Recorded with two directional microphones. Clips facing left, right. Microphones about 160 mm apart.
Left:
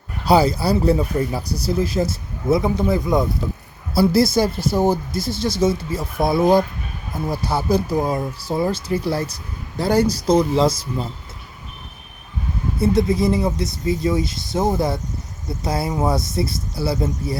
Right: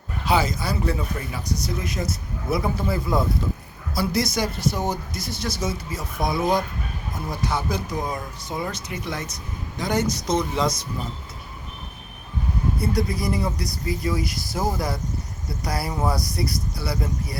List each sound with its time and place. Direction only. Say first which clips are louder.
0.3 s speech: left 7 dB; 35° left (ahead or behind)
3.9 s speech: left 8 dB; 30° left (ahead or behind)
12.8 s speech: left 10 dB; 25° left (ahead or behind)